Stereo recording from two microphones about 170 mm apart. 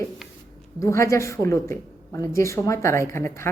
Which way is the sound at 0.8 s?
15° left (ahead or behind).